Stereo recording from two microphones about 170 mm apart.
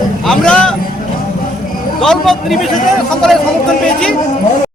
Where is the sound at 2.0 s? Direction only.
Centre (ahead or behind).